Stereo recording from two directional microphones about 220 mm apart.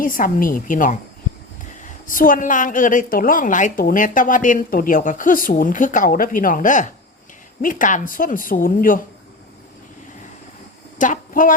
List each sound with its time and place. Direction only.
0.0 s a woman's voice: 40° left (ahead or behind)
10.9 s speech: 35° left (ahead or behind)